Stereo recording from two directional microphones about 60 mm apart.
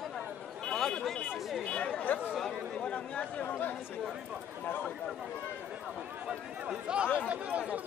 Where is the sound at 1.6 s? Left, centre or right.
Centre.